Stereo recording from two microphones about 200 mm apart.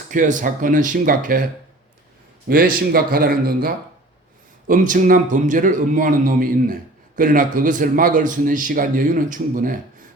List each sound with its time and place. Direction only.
0.1 s speech: 40° right (ahead or behind)
2.5 s a man's voice: 50° right (ahead or behind)